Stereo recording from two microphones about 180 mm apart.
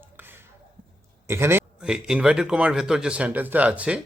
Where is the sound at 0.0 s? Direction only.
10° right (ahead or behind).